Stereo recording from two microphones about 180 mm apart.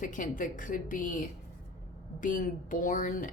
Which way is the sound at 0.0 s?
45° left (ahead or behind).